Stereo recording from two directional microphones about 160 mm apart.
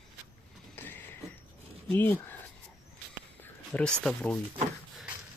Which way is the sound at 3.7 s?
5° left (ahead or behind).